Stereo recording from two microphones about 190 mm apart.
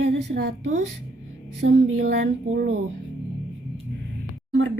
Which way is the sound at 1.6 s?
85° right.